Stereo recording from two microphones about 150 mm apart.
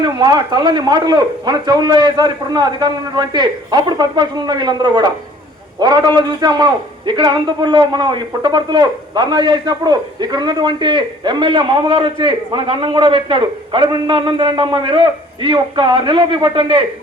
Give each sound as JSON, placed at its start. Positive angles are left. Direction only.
{"t": 0.0, "sound": "a man's voice", "side_deg": -30}